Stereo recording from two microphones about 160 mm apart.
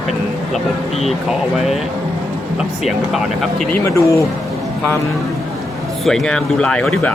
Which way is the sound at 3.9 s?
20° left (ahead or behind).